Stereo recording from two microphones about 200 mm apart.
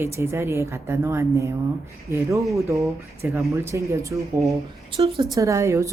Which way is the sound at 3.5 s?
15° right (ahead or behind).